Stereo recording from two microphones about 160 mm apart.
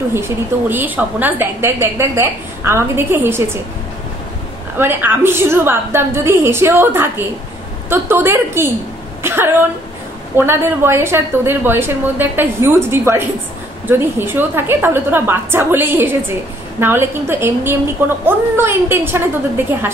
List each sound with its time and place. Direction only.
0.1 s a woman's voice: 15° right (ahead or behind)
4.7 s a woman's voice: 15° right (ahead or behind)